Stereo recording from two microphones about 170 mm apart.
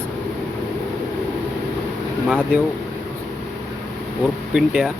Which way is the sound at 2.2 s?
5° left (ahead or behind).